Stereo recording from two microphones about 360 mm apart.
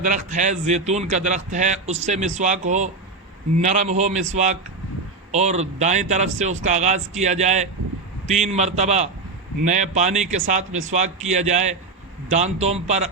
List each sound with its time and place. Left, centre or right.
0.0 s speech: right
5.3 s speech: centre